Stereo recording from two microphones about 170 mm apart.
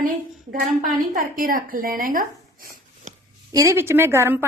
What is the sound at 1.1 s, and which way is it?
Speech, 55° right (ahead or behind).